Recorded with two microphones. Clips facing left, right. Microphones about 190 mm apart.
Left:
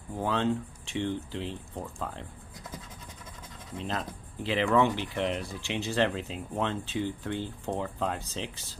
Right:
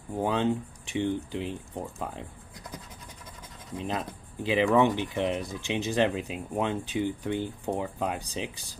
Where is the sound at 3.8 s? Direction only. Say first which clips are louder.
Right 2 dB; 15° right (ahead or behind).